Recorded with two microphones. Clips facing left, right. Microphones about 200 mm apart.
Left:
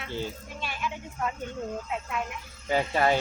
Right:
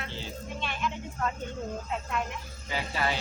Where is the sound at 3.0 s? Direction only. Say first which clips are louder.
Left 6 dB; 45° left (ahead or behind).